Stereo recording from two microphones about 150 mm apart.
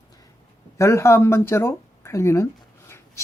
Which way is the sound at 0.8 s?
20° left (ahead or behind).